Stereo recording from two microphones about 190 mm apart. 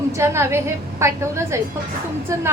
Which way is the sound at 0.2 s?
15° right (ahead or behind).